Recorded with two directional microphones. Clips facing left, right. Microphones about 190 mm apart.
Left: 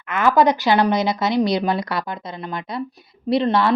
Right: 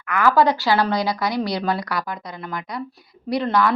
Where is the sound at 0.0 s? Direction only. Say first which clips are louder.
Left 1 dB; 20° left (ahead or behind).